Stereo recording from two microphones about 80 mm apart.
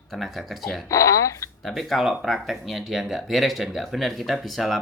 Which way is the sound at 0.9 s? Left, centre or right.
Left.